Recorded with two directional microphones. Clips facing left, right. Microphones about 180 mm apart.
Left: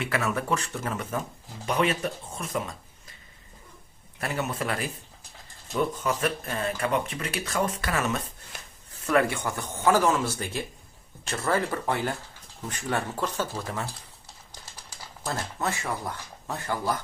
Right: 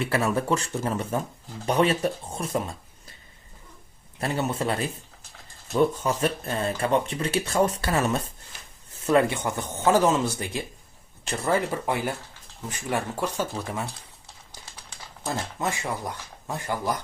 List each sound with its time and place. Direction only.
0.0 s speech: 35° right (ahead or behind)
4.2 s speech: 30° right (ahead or behind); by 13.8 s 10° right (ahead or behind)
15.3 s speech: 15° right (ahead or behind)